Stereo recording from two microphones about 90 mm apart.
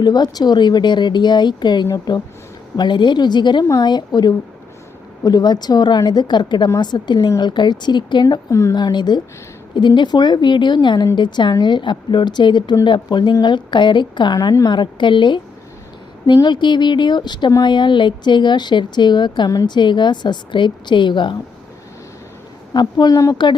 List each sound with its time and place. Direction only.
0.0 s a woman's voice: 50° left (ahead or behind)
2.7 s a woman's voice: 60° left (ahead or behind)
8.4 s a woman's voice: 35° left (ahead or behind)
8.7 s speech: 55° left (ahead or behind)
19.5 s a woman's voice: 40° left (ahead or behind)
19.7 s speech: 60° left (ahead or behind)
22.7 s a woman's voice: 55° left (ahead or behind)